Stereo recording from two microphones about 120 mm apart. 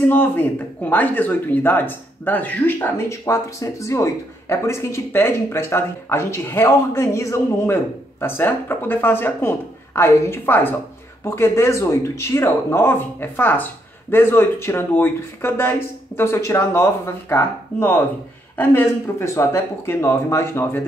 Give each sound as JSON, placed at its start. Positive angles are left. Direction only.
{"t": 0.1, "sound": "a man's voice", "side_deg": 15}